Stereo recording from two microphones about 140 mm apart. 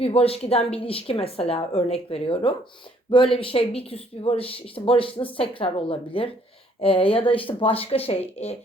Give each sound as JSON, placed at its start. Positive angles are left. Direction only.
{"t": 0.0, "sound": "a woman's voice", "side_deg": 45}